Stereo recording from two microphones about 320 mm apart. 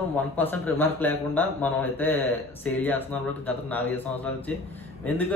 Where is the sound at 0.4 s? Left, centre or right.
Centre.